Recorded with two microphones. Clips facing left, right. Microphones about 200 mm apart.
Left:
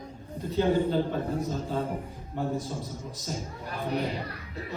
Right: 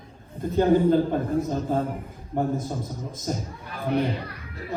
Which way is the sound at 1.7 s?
50° right (ahead or behind).